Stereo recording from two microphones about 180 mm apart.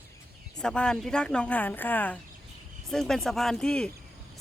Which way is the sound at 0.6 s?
5° left (ahead or behind).